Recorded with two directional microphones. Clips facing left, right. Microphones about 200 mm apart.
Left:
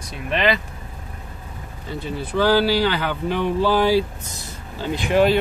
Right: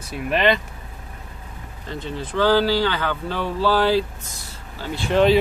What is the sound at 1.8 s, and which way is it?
Speech, 10° left (ahead or behind).